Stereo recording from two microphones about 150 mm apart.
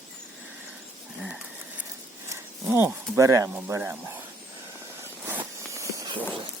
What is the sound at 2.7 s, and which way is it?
Speech, 20° right (ahead or behind).